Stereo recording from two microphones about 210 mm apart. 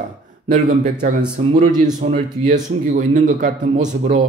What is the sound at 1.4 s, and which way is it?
A man's voice, 30° right (ahead or behind).